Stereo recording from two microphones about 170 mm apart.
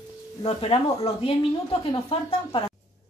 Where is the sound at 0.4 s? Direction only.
35° left (ahead or behind).